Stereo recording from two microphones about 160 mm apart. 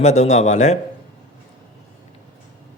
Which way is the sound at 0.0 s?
45° left (ahead or behind).